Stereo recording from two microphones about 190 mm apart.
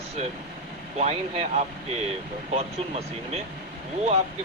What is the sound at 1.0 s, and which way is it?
Speech, 30° right (ahead or behind).